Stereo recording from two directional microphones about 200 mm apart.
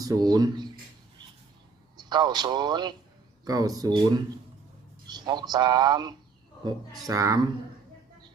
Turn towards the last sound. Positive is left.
turn(degrees=-15)  # may be behind; listen again after turning